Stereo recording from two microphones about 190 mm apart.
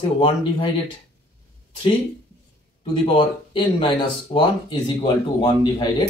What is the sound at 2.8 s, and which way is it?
Speech, 25° left (ahead or behind).